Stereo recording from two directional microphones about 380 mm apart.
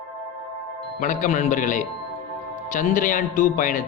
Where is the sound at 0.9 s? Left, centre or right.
Centre.